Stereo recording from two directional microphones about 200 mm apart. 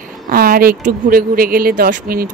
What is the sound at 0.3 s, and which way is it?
A woman's voice, 45° right (ahead or behind).